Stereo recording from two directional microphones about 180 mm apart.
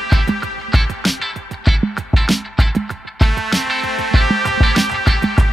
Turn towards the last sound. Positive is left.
turn(degrees=0)  # may be behind; listen again after turning